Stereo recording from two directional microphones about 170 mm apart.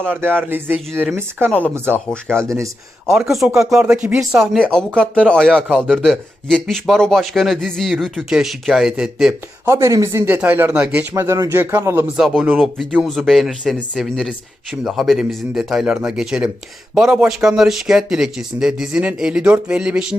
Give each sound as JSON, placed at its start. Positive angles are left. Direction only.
{"t": 0.0, "sound": "speech", "side_deg": -10}
{"t": 1.5, "sound": "speech", "side_deg": 5}
{"t": 1.7, "sound": "a man's voice", "side_deg": -15}
{"t": 9.6, "sound": "a man's voice", "side_deg": -15}